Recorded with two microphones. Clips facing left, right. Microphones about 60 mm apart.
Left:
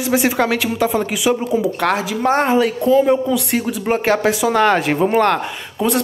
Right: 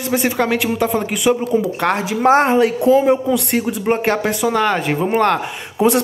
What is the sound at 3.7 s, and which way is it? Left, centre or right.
A man's voice, centre.